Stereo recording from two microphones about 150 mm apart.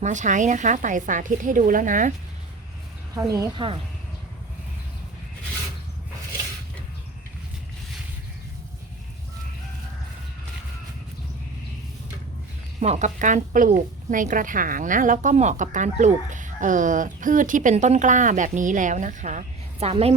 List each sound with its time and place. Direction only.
0.0 s speech: 55° right (ahead or behind)
3.2 s speech: 20° right (ahead or behind)
12.8 s speech: 50° right (ahead or behind)